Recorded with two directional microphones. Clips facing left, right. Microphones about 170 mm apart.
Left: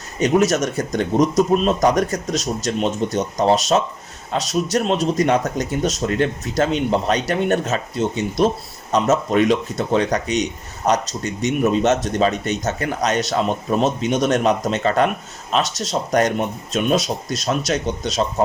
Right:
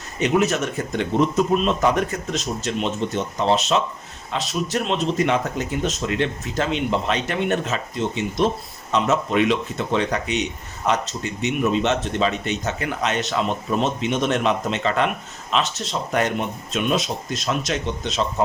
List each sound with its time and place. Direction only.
0.2 s speech: 40° left (ahead or behind)